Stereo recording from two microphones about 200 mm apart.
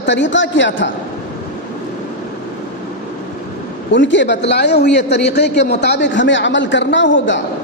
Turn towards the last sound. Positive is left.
turn(degrees=70)  # may be behind; listen again after turning